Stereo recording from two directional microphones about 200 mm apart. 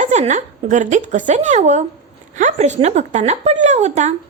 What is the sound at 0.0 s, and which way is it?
A woman's voice, 35° right (ahead or behind).